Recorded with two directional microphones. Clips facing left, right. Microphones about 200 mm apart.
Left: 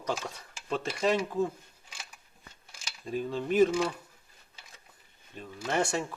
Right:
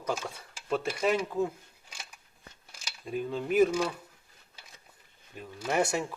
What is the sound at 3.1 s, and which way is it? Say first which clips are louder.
Speech: even; 5° right (ahead or behind).